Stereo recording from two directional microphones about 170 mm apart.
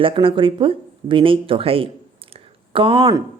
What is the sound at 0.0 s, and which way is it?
Speech, 30° right (ahead or behind).